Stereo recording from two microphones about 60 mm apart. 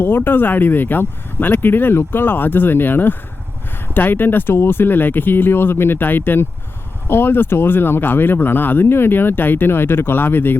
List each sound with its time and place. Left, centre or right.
0.0 s speech: left